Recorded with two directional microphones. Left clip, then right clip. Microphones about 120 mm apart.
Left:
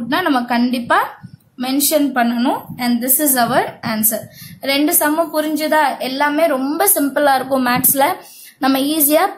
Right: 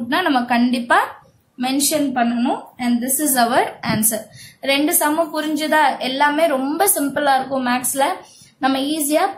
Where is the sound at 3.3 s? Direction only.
15° left (ahead or behind).